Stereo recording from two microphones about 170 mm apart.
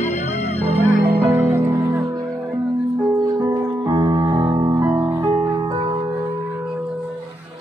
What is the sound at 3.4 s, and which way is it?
Music, 20° right (ahead or behind).